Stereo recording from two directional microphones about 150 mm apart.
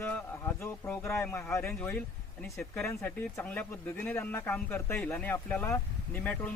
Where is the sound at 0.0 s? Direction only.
15° left (ahead or behind).